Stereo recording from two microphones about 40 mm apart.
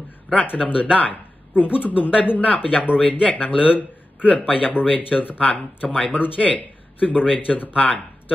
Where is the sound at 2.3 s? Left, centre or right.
Left.